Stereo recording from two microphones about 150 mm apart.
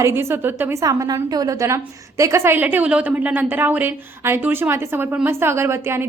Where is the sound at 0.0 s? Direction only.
15° right (ahead or behind).